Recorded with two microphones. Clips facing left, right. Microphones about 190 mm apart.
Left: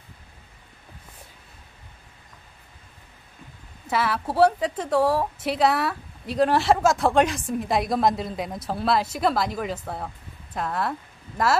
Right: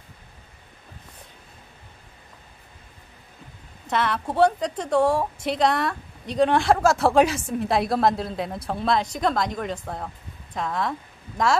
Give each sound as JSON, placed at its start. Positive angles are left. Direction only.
{"t": 3.8, "sound": "a woman's voice", "side_deg": 5}